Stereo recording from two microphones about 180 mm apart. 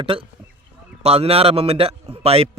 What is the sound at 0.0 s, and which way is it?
A man's voice, 30° right (ahead or behind).